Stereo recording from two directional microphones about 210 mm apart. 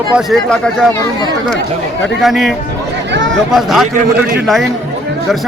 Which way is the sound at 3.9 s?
45° right (ahead or behind).